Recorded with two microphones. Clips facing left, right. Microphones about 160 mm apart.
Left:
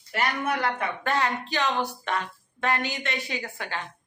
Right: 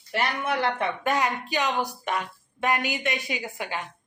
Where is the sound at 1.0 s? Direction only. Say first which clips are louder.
Left 1 dB; 15° right (ahead or behind).